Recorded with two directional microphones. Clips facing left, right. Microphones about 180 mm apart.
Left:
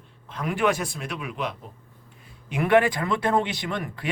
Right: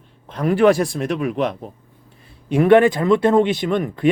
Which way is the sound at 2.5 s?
25° right (ahead or behind).